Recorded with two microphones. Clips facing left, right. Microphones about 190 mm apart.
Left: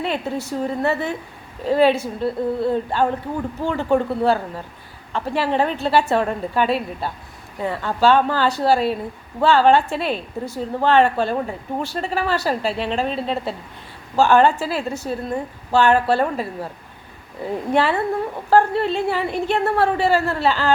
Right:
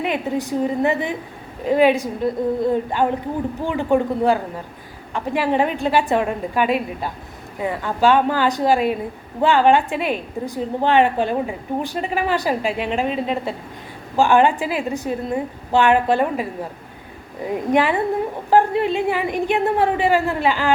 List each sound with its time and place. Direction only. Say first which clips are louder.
0.0 s a woman's voice: right 2 dB; 15° right (ahead or behind)
17.7 s a woman's voice: right 1 dB; 15° right (ahead or behind)